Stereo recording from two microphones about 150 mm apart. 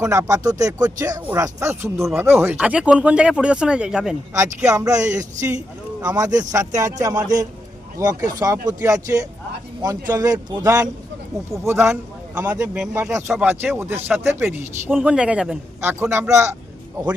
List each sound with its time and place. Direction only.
0.0 s speech: 20° right (ahead or behind); by 4.2 s 5° right (ahead or behind)
4.4 s speech: 20° right (ahead or behind)
5.5 s a sound: 10° right (ahead or behind)
6.1 s a man's voice: 25° right (ahead or behind)